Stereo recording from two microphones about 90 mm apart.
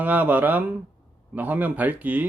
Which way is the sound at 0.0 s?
20° right (ahead or behind).